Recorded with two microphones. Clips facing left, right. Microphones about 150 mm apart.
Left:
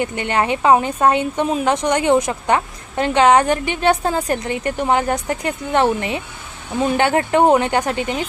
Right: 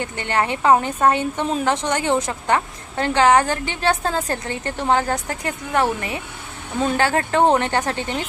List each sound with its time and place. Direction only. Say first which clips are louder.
0.0 s a woman's voice: left 3 dB; 15° left (ahead or behind)